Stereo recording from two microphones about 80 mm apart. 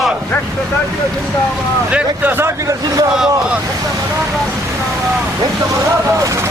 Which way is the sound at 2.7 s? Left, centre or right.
Right.